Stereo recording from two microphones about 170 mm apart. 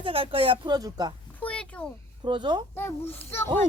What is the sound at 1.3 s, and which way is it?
Speech, 10° left (ahead or behind).